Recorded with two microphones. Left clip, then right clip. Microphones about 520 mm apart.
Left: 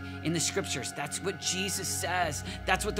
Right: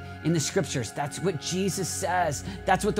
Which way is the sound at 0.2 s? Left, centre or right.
Right.